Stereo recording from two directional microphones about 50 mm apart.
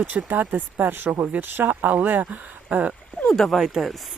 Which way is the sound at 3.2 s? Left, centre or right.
Centre.